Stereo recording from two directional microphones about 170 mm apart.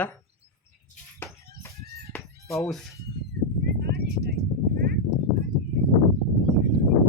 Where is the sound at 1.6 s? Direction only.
15° left (ahead or behind).